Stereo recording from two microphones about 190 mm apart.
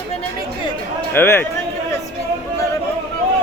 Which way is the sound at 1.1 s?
10° left (ahead or behind).